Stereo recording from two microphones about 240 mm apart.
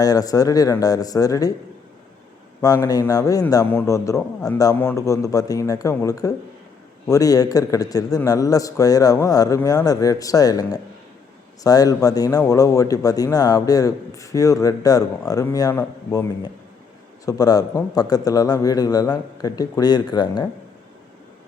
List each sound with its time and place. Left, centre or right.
0.0 s speech: centre
2.6 s speech: centre